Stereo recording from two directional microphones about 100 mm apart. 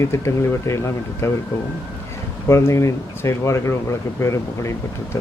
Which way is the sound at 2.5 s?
30° left (ahead or behind).